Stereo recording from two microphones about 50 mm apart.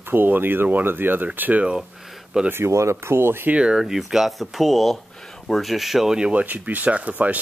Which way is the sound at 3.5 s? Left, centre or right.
Centre.